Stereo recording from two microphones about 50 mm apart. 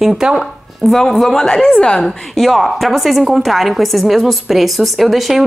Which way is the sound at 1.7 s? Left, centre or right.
Centre.